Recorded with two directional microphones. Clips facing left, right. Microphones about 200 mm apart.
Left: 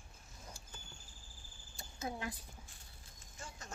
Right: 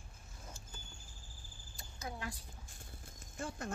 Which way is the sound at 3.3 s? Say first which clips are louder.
Right 10 dB; 55° right (ahead or behind).